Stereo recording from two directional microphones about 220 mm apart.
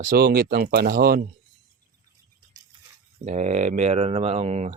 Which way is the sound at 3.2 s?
30° right (ahead or behind).